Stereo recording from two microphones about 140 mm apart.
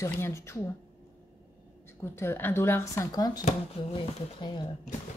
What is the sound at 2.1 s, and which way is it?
Speech, 15° left (ahead or behind).